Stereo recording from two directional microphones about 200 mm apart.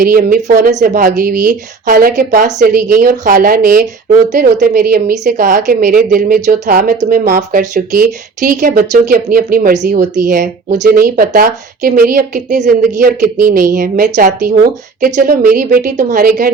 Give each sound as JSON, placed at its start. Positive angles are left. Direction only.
{"t": 0.0, "sound": "speech", "side_deg": -45}